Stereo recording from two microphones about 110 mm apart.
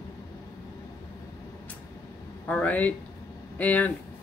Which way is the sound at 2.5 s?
15° left (ahead or behind).